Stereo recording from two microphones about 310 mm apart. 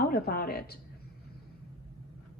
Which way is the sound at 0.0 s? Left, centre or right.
Left.